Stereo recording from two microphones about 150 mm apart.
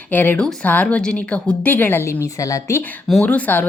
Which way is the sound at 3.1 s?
5° left (ahead or behind).